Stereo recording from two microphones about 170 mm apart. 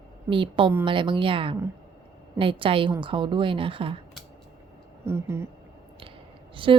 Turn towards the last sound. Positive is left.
turn(degrees=-30)  # may be behind; listen again after turning